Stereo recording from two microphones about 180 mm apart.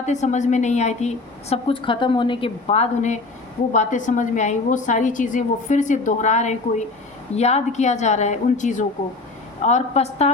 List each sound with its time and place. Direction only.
0.0 s a woman's voice: 40° left (ahead or behind)